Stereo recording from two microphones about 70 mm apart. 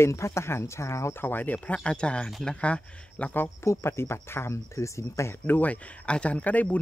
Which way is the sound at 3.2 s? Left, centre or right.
Left.